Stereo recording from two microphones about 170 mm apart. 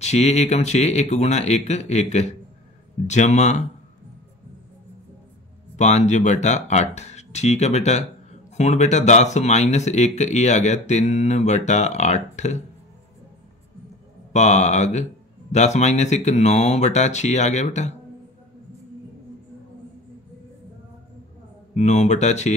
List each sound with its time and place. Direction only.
0.0 s speech: 40° left (ahead or behind)
5.8 s speech: 45° left (ahead or behind)
14.3 s speech: 45° left (ahead or behind)
21.7 s speech: 40° left (ahead or behind)